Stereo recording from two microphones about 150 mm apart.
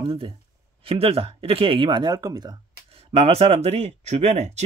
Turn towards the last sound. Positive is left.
turn(degrees=-50)  # may be behind; listen again after turning